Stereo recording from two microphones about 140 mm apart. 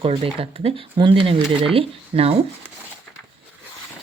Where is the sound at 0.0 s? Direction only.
40° right (ahead or behind).